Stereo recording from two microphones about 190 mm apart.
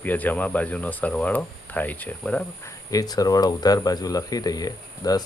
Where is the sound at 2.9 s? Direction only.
20° left (ahead or behind).